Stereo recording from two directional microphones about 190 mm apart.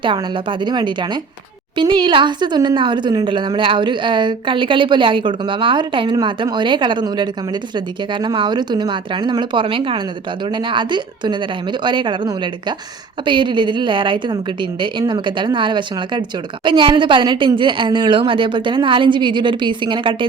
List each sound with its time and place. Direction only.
0.0 s speech: 25° right (ahead or behind)